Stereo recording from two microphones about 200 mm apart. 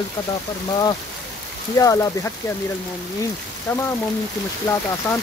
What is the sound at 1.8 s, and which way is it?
Speech, 15° left (ahead or behind).